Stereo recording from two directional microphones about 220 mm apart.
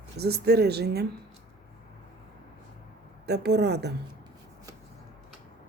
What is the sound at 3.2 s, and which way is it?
Speech, 50° right (ahead or behind).